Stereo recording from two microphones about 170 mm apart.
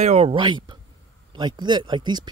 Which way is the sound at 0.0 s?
40° right (ahead or behind).